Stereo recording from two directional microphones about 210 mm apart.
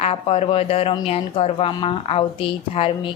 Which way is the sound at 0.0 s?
30° left (ahead or behind).